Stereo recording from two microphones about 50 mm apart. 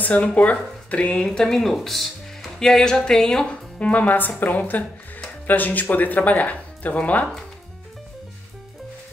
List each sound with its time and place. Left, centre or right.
0.0 s speech: left
1.1 s speech: centre
3.8 s speech: left